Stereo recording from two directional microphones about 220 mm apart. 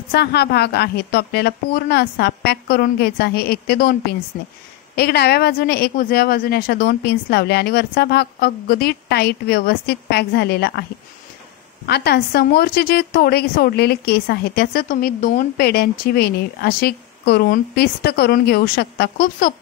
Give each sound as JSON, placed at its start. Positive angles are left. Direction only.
{"t": 0.1, "sound": "a woman's voice", "side_deg": 50}